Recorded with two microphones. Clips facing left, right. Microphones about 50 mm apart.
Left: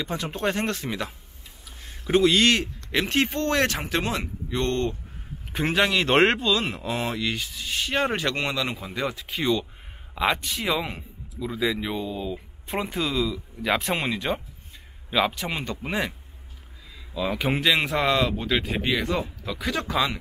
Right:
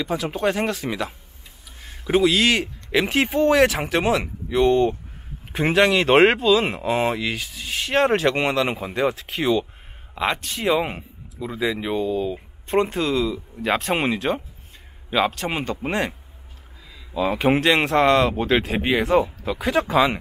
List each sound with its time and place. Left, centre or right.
0.0 s a man's voice: centre
10.9 s a sound: centre
11.6 s a man's voice: centre
17.1 s speech: right
17.6 s a man's voice: centre
18.8 s speech: centre